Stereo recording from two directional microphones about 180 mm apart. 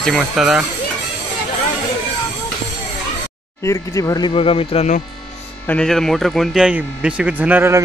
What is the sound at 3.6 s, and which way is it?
Speech, 20° left (ahead or behind).